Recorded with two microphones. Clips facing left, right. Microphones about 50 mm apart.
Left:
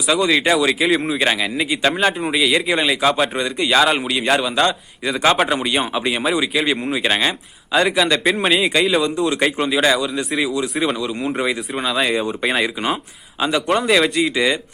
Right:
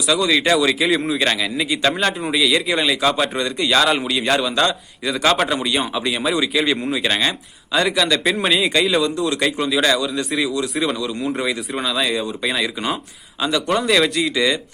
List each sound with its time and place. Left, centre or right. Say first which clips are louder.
0.1 s speech: left 1 dB; centre
9.3 s speech: left 1 dB; left
11.0 s speech: left 1 dB; centre
11.3 s speech: left 1 dB; centre